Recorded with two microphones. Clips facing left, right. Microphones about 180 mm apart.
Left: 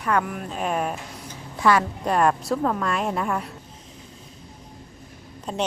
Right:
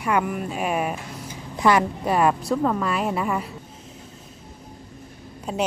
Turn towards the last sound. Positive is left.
turn(degrees=-10)  # may be behind; listen again after turning